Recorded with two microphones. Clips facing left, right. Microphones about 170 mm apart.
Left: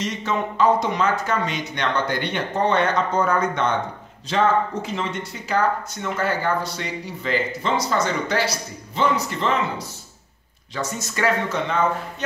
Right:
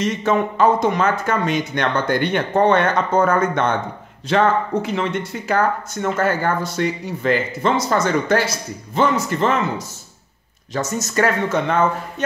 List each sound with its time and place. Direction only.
0.0 s speech: 50° right (ahead or behind)
4.3 s speech: 65° right (ahead or behind)
5.5 s speech: 50° right (ahead or behind)